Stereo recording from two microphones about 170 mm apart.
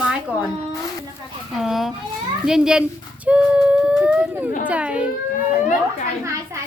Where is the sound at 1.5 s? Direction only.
Centre (ahead or behind).